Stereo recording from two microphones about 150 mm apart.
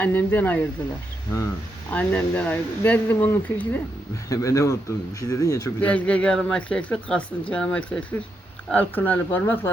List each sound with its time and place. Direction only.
0.0 s speech: 10° left (ahead or behind)
1.3 s speech: 25° left (ahead or behind)
1.9 s speech: 10° left (ahead or behind)
5.8 s speech: 10° left (ahead or behind)